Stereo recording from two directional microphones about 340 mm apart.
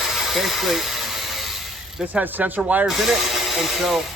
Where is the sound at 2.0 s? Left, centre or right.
Centre.